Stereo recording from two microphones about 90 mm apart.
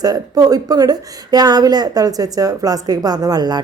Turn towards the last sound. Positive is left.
turn(degrees=-50)  # may be behind; listen again after turning